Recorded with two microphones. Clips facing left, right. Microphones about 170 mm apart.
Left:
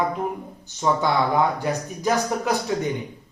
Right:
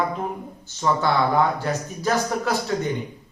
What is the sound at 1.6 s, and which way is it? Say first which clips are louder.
Speech: left 1 dB; 15° left (ahead or behind).